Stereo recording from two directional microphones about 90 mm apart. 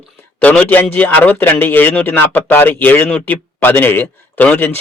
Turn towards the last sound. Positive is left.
turn(degrees=20)  # may be behind; listen again after turning